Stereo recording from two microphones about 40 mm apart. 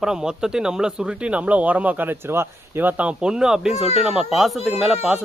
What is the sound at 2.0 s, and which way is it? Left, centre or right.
Speech, right.